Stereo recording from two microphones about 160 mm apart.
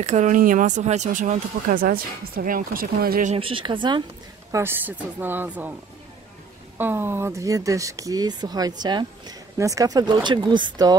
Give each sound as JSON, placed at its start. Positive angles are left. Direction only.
{"t": 0.0, "sound": "speech", "side_deg": -50}
{"t": 3.3, "sound": "speech", "side_deg": -35}
{"t": 4.5, "sound": "speech", "side_deg": -15}
{"t": 6.8, "sound": "speech", "side_deg": -15}